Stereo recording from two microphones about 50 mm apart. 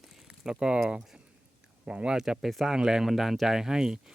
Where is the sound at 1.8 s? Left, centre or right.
Centre.